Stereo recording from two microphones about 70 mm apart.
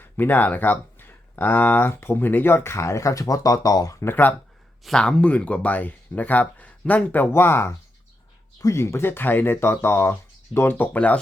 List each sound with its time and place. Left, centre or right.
0.0 s speech: left
4.0 s speech: left
4.8 s speech: centre
5.0 s speech: centre; by 10.8 s left
10.9 s speech: centre